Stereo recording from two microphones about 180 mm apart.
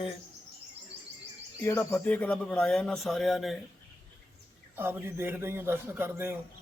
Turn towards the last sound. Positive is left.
turn(degrees=-15)  # may be behind; listen again after turning